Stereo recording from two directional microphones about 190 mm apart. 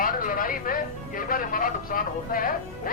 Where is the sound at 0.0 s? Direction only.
45° left (ahead or behind).